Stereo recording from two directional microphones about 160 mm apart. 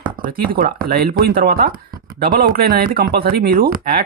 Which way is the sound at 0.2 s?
65° right (ahead or behind).